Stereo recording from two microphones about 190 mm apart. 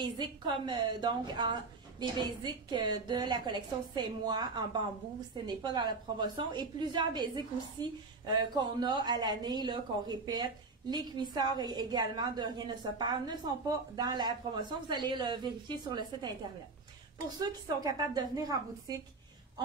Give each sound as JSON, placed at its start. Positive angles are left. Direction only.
{"t": 0.0, "sound": "a woman's voice", "side_deg": -25}
{"t": 17.8, "sound": "a woman's voice", "side_deg": -20}